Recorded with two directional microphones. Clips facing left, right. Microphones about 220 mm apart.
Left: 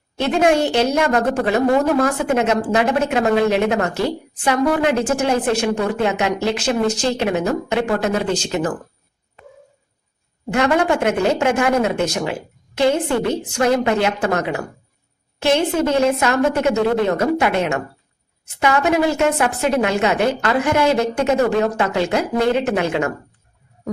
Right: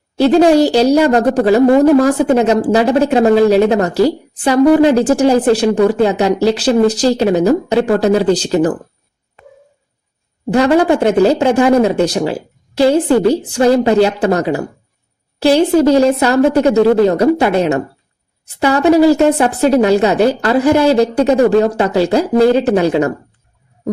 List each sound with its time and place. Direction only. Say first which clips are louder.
0.2 s a woman's voice: right 8 dB; 35° right (ahead or behind)
10.5 s a woman's voice: right 6 dB; 35° right (ahead or behind)